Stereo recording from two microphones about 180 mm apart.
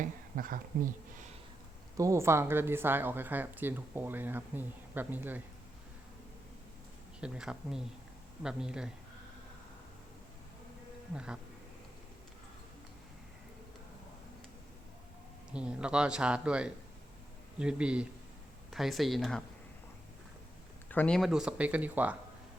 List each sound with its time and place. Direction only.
0.0 s a sound: 50° right (ahead or behind)
2.0 s speech: 15° right (ahead or behind)
7.2 s speech: 5° right (ahead or behind)
11.1 s speech: 5° right (ahead or behind)
15.5 s speech: 5° right (ahead or behind)
20.9 s speech: 5° left (ahead or behind)